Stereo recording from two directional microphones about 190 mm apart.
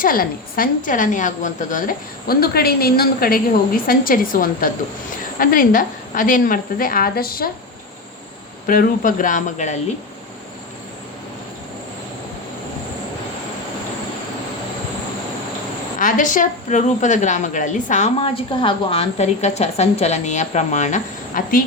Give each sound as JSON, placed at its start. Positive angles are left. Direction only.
{"t": 0.0, "sound": "a woman's voice", "side_deg": 50}
{"t": 8.6, "sound": "a woman's voice", "side_deg": 50}
{"t": 16.0, "sound": "a woman's voice", "side_deg": 45}